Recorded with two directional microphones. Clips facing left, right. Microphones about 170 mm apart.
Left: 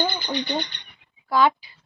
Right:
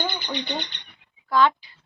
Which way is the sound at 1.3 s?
10° left (ahead or behind).